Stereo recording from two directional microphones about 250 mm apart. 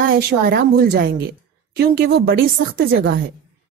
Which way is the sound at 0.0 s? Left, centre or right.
Right.